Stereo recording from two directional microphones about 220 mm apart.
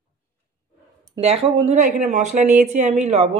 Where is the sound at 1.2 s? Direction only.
25° right (ahead or behind).